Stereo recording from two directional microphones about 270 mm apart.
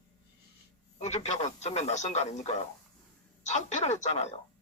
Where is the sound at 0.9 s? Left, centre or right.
Left.